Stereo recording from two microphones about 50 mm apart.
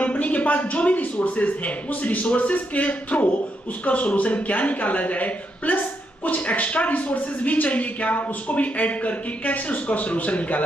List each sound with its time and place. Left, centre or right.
0.0 s speech: left